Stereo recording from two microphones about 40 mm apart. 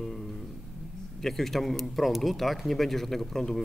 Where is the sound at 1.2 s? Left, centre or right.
Centre.